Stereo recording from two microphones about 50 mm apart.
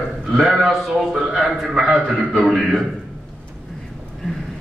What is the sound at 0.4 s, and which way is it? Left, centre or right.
A man's voice, centre.